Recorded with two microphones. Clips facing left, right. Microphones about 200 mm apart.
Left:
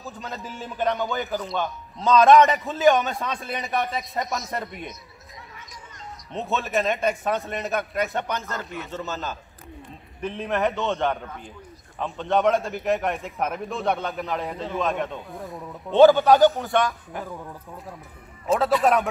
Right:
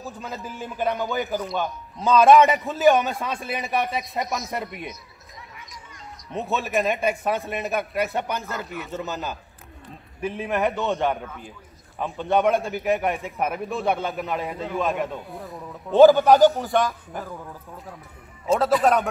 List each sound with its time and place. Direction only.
0.0 s a man's voice: centre (ahead or behind)
6.6 s a man's voice: centre (ahead or behind)
8.9 s a man's voice: 15° right (ahead or behind); by 19.0 s centre (ahead or behind)